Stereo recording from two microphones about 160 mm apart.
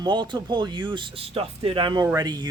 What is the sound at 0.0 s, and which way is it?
Speech, 30° right (ahead or behind).